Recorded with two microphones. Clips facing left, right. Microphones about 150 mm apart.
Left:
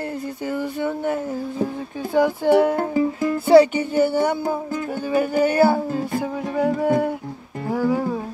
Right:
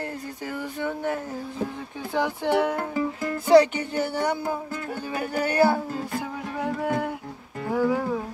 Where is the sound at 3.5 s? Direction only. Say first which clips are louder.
Left 4 dB; 10° left (ahead or behind).